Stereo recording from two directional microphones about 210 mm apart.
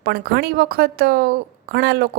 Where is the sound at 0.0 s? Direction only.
50° right (ahead or behind).